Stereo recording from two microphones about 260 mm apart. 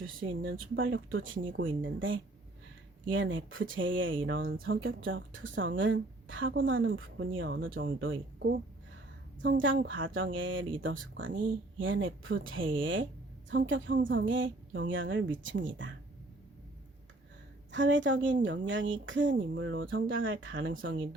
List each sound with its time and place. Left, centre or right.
0.2 s a woman's voice: right
17.7 s a woman's voice: right